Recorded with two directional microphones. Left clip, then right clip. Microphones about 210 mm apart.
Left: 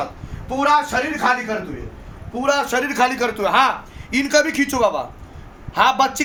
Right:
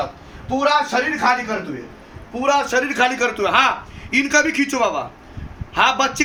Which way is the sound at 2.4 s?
35° left (ahead or behind).